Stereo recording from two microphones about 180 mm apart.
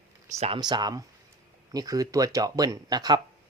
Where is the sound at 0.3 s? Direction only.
35° right (ahead or behind).